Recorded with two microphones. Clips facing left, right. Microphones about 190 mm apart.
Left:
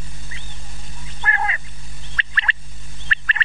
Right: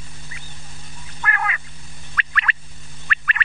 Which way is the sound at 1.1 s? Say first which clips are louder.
Left 1 dB; 30° left (ahead or behind).